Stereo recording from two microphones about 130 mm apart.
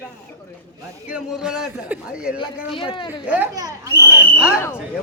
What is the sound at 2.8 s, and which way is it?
Speech, 40° left (ahead or behind).